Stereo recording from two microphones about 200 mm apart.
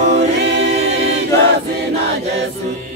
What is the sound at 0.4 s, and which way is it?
Choir, 60° right (ahead or behind).